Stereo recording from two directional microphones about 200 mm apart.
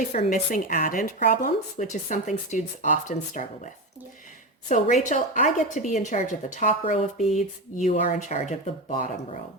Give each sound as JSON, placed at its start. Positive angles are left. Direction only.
{"t": 0.0, "sound": "speech", "side_deg": 40}
{"t": 4.7, "sound": "speech", "side_deg": 35}